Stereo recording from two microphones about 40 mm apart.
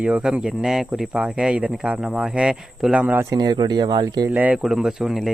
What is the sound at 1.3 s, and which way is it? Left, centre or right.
Speech, right.